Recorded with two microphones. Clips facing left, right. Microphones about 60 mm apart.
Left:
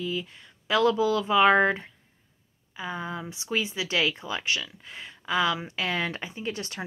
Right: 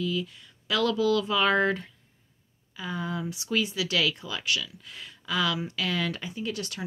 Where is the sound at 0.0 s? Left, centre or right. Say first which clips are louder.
Right 2 dB; left.